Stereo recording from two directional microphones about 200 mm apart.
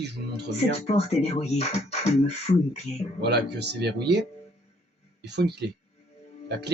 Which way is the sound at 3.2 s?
55° right (ahead or behind).